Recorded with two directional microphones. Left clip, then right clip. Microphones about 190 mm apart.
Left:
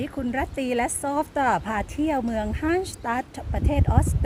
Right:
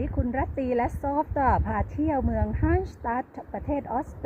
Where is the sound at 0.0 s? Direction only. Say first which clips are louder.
Left 2 dB; 20° left (ahead or behind).